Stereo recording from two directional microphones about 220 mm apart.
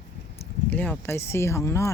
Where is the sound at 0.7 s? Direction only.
5° left (ahead or behind).